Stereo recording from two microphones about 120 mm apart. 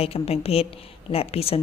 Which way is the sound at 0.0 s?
55° left (ahead or behind).